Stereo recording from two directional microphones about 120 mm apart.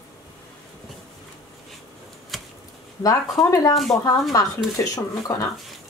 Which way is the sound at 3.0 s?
30° left (ahead or behind).